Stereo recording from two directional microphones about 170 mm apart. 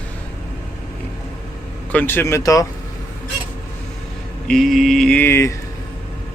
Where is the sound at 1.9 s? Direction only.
10° left (ahead or behind).